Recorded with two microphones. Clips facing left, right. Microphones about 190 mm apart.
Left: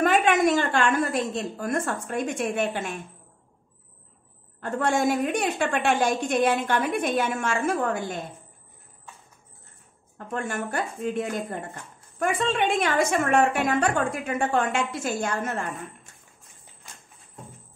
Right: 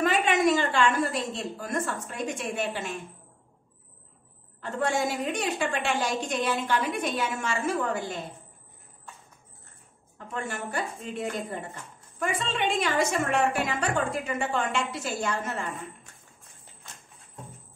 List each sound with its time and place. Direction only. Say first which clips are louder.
0.0 s speech: left 3 dB; 50° left (ahead or behind)
4.6 s a woman's voice: left 3 dB; 50° left (ahead or behind)
10.1 s speech: left 4 dB; 50° left (ahead or behind)